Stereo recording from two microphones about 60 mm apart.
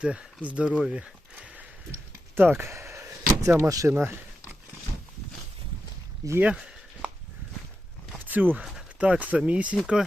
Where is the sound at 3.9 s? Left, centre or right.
Right.